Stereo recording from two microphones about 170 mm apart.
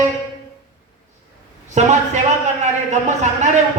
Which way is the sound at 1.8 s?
45° right (ahead or behind).